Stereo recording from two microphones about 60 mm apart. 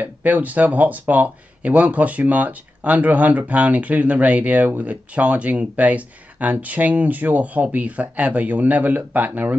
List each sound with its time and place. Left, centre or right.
0.0 s speech: right